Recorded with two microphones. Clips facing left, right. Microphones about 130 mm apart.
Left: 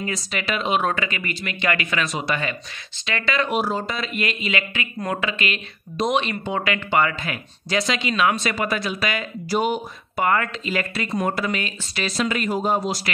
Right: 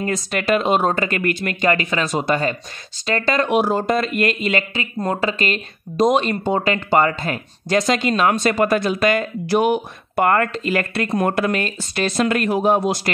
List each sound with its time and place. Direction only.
0.0 s speech: 50° right (ahead or behind)
1.7 s speech: 35° right (ahead or behind)
3.4 s speech: 55° right (ahead or behind)